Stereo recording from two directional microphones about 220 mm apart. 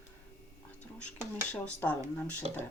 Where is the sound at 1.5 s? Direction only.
5° left (ahead or behind).